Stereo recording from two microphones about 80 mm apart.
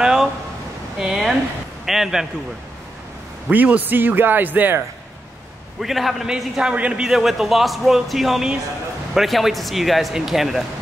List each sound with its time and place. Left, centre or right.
0.0 s a sound: centre
1.9 s a man's voice: centre
3.4 s a man's voice: centre
5.8 s a man's voice: centre